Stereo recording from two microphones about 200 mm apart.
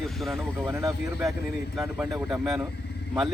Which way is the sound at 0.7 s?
15° right (ahead or behind).